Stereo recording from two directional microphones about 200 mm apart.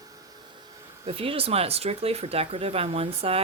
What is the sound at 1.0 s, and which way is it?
Speech, 30° right (ahead or behind).